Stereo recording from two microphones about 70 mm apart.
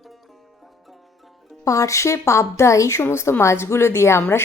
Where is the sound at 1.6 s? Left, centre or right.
Left.